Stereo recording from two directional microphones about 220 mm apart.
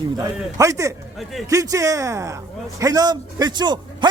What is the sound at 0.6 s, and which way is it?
A man's voice, 15° right (ahead or behind).